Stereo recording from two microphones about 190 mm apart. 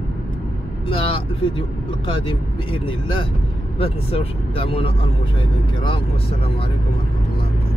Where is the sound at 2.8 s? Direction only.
25° left (ahead or behind).